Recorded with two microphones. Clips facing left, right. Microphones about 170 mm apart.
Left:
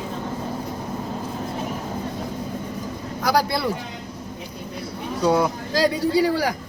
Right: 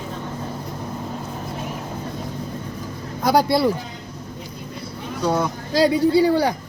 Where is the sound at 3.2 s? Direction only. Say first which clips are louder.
Right 5 dB; 20° right (ahead or behind).